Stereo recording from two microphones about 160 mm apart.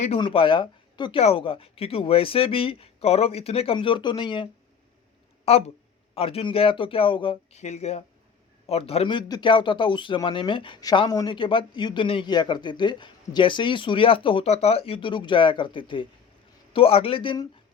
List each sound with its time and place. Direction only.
0.2 s a man's voice: 30° left (ahead or behind)
5.5 s a man's voice: 40° left (ahead or behind)
7.6 s a man's voice: 45° left (ahead or behind); by 17.5 s 30° left (ahead or behind)